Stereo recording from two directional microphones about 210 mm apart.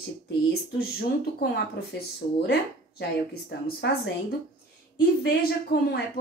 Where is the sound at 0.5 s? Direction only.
50° left (ahead or behind).